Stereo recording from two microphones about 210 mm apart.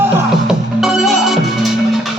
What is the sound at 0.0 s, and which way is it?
Music, centre (ahead or behind).